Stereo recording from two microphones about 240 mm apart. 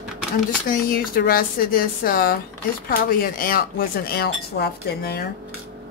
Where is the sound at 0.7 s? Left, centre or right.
Left.